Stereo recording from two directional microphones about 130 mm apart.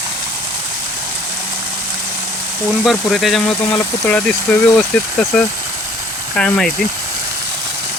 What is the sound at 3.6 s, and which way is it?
Speech, 10° left (ahead or behind).